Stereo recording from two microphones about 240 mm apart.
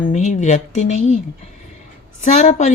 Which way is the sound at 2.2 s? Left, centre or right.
Left.